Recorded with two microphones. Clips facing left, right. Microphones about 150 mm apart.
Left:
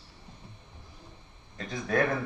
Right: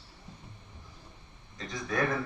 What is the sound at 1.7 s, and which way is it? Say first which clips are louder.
Speech: left 5 dB; 55° left (ahead or behind).